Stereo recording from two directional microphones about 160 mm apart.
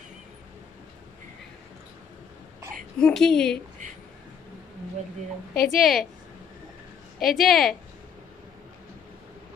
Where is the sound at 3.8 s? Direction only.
50° right (ahead or behind).